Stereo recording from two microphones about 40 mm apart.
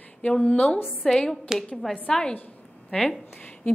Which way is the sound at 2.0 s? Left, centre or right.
Left.